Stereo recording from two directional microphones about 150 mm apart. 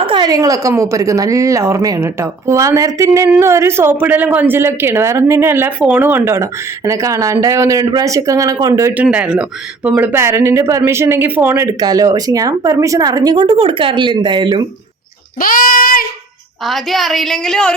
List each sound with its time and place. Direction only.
0.0 s a woman's voice: 30° right (ahead or behind)
9.0 s a woman's voice: 10° right (ahead or behind); by 14.6 s 30° right (ahead or behind)
15.4 s speech: 70° left (ahead or behind)
16.6 s a woman's voice: centre (ahead or behind)